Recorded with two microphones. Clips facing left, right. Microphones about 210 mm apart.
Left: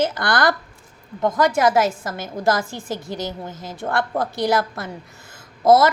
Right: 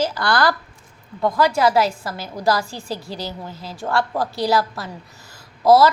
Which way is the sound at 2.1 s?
25° left (ahead or behind).